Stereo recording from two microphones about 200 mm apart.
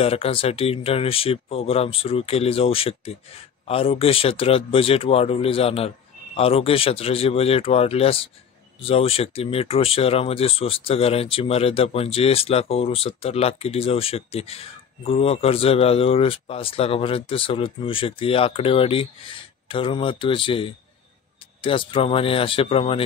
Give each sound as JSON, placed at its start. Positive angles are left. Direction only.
{"t": 0.0, "sound": "speech", "side_deg": 30}